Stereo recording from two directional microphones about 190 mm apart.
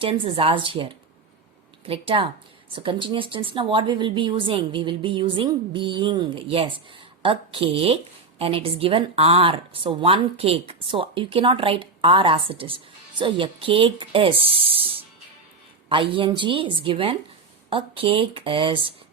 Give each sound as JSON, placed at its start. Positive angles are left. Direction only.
{"t": 0.0, "sound": "speech", "side_deg": -30}
{"t": 15.9, "sound": "speech", "side_deg": -25}